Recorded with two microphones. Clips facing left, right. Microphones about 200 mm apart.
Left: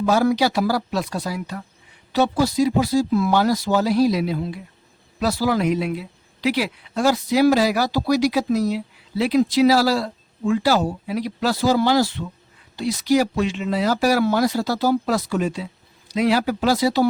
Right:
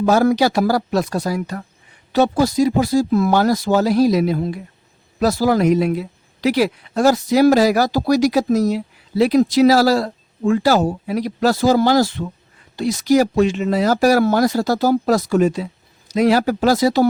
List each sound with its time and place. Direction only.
0.0 s speech: 45° right (ahead or behind)